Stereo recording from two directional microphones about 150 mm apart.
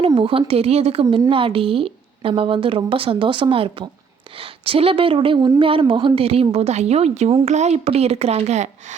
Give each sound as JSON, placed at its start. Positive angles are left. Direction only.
{"t": 0.0, "sound": "a woman's voice", "side_deg": -35}
{"t": 1.0, "sound": "a woman's voice", "side_deg": -30}